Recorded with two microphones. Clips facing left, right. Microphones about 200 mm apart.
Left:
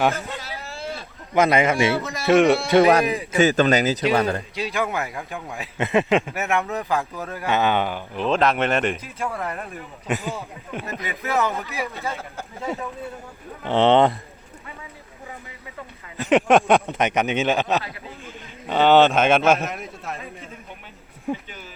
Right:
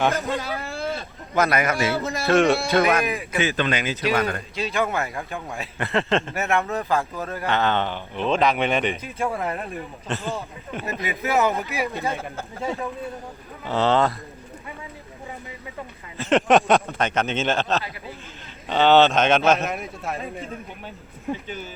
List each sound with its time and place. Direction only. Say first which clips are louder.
0.3 s a sound: right 6 dB; 50° right (ahead or behind)
1.3 s a man's voice: left 3 dB; 20° left (ahead or behind)
2.6 s speech: left 4 dB; 30° left (ahead or behind)
4.5 s a man's voice: right 1 dB; 15° left (ahead or behind)
9.3 s speech: right 2 dB; 15° right (ahead or behind)
10.2 s speech: right 1 dB; centre (ahead or behind)
11.4 s speech: right 3 dB; 15° right (ahead or behind)
12.5 s speech: even; centre (ahead or behind)
13.7 s a man's voice: left 4 dB; 25° left (ahead or behind)
16.1 s a man's voice: left 1 dB; 15° left (ahead or behind)